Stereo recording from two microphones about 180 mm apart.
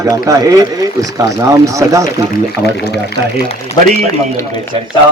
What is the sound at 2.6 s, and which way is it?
Speech, 65° left (ahead or behind).